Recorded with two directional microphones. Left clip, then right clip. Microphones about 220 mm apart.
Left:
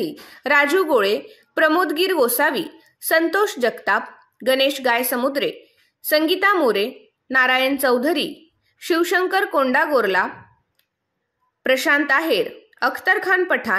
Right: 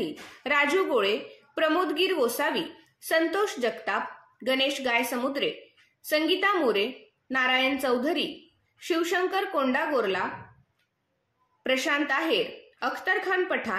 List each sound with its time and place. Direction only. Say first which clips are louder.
0.0 s a woman's voice: left 7 dB; 45° left (ahead or behind)
11.6 s a woman's voice: left 8 dB; 45° left (ahead or behind)